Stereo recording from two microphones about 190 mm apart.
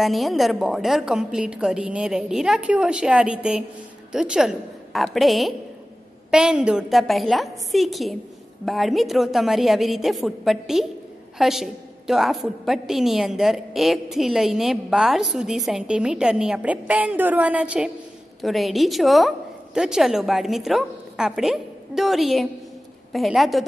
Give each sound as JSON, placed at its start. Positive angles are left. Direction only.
{"t": 0.0, "sound": "a woman's voice", "side_deg": 0}